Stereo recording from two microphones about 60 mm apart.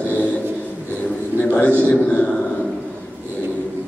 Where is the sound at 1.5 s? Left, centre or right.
Left.